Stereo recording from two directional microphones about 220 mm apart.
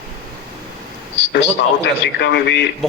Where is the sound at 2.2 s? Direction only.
50° left (ahead or behind).